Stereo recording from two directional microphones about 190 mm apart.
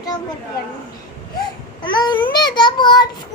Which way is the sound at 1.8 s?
25° left (ahead or behind).